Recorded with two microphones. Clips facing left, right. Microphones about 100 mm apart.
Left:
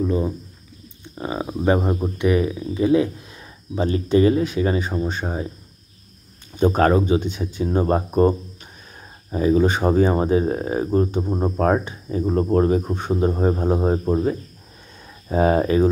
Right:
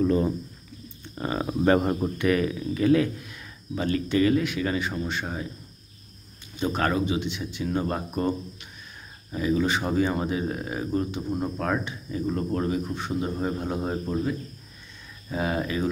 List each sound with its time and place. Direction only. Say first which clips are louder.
0.0 s speech: even; 10° left (ahead or behind); by 5.5 s 30° left (ahead or behind)
6.5 s speech: left 9 dB; 45° left (ahead or behind)